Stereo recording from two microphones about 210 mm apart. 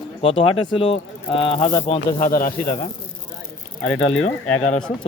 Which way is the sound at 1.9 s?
35° left (ahead or behind).